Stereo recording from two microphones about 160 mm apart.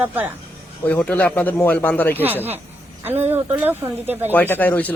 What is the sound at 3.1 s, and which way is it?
A woman's voice, 15° right (ahead or behind).